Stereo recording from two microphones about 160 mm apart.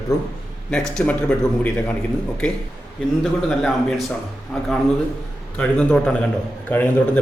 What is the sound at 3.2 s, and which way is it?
Speech, centre (ahead or behind).